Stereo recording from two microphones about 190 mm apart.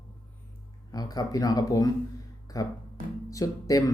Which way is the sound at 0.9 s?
20° left (ahead or behind).